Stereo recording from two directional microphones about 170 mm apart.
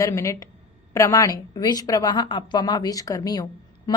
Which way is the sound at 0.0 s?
20° left (ahead or behind).